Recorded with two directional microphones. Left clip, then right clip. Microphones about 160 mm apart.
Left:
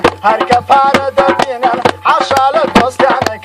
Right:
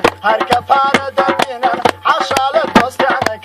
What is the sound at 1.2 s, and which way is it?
Music, 30° right (ahead or behind).